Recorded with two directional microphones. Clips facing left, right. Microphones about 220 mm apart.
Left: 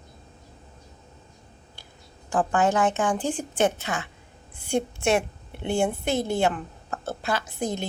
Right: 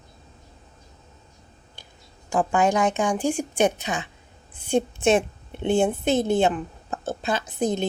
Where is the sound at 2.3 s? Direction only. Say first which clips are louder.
Right 1 dB; 10° right (ahead or behind).